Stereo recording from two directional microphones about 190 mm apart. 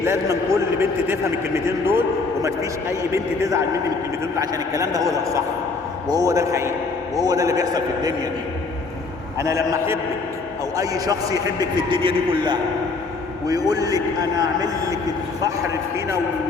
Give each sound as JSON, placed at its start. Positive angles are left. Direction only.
{"t": 0.0, "sound": "a man's voice", "side_deg": -15}
{"t": 9.4, "sound": "a man's voice", "side_deg": -15}